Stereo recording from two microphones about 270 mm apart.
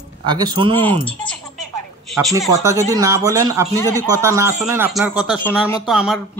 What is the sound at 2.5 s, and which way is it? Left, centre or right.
Speech, centre.